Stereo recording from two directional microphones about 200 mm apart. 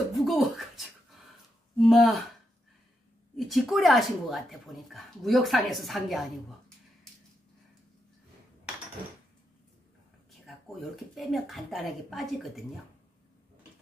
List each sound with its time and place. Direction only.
0.1 s a sound: centre (ahead or behind)
1.8 s speech: centre (ahead or behind)
3.3 s speech: centre (ahead or behind)
10.4 s speech: centre (ahead or behind)